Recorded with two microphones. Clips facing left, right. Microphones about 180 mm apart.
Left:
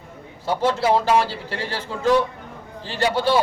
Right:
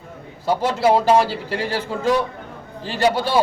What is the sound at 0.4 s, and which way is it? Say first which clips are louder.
A man's voice: right 2 dB; 10° right (ahead or behind).